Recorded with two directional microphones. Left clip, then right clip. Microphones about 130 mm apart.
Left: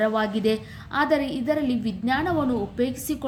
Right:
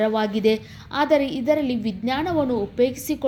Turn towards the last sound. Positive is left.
turn(degrees=-25)  # may be behind; listen again after turning